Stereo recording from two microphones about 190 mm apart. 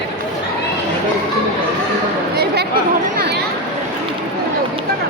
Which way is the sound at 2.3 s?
60° right (ahead or behind).